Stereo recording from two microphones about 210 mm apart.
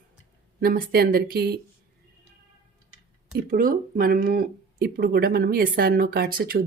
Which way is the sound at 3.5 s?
40° right (ahead or behind).